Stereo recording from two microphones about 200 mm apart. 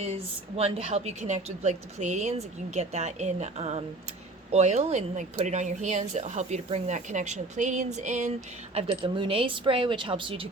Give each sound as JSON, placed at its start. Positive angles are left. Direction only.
{"t": 0.0, "sound": "speech", "side_deg": -30}
{"t": 8.7, "sound": "speech", "side_deg": -25}